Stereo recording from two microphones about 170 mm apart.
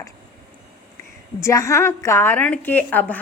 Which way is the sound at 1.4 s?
15° left (ahead or behind).